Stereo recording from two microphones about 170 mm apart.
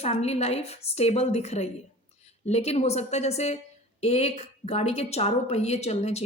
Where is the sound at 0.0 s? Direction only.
40° left (ahead or behind).